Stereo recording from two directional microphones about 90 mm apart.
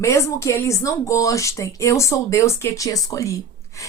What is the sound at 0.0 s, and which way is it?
Speech, 35° left (ahead or behind).